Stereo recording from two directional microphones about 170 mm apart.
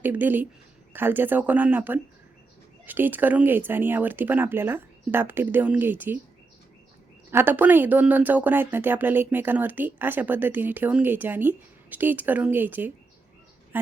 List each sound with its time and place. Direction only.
0.0 s speech: 10° right (ahead or behind)
7.3 s speech: 10° right (ahead or behind)